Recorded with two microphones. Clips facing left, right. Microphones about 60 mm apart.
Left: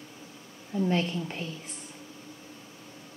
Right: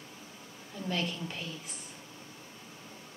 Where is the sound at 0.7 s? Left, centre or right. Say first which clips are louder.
Left 7 dB; left.